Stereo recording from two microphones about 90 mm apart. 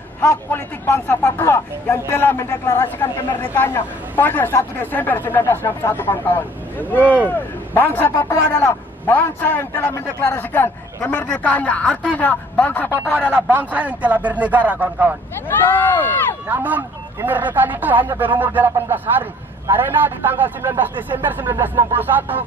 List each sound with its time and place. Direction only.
0.5 s a man's voice: 25° left (ahead or behind)
7.0 s a man's voice: 15° right (ahead or behind)
7.2 s speech: 20° left (ahead or behind)
13.2 s a man's voice: 15° right (ahead or behind)
15.4 s speech: 20° left (ahead or behind)
16.4 s speech: 20° right (ahead or behind)